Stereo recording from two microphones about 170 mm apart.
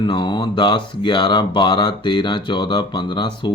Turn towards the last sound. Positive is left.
turn(degrees=25)  # may be behind; listen again after turning